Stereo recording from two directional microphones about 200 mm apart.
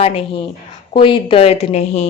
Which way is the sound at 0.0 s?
30° left (ahead or behind).